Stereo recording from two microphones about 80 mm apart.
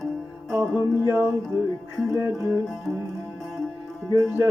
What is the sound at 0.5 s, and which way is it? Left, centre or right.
Music, right.